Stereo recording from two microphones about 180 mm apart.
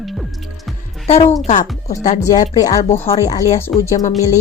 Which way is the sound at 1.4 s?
40° left (ahead or behind).